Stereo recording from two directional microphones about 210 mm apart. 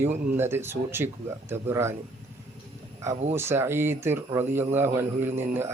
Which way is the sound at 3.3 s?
10° right (ahead or behind).